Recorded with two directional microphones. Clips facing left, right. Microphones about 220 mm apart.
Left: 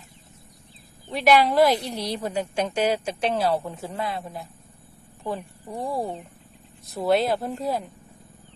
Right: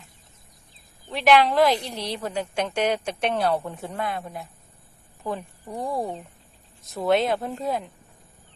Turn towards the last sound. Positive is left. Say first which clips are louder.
# even
turn(degrees=0)  # may be behind; listen again after turning